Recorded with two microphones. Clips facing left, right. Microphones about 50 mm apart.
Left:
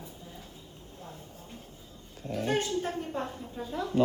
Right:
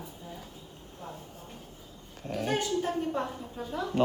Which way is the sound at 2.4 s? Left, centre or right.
Left.